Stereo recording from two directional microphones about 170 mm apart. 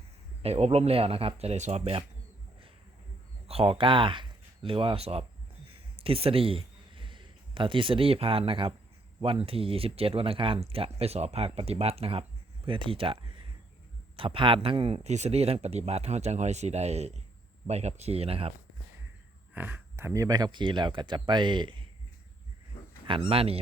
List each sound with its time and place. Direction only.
0.4 s speech: 40° right (ahead or behind)
3.4 s a man's voice: 35° right (ahead or behind)
19.5 s speech: 10° right (ahead or behind); by 21.8 s 25° right (ahead or behind)
23.0 s speech: 30° right (ahead or behind)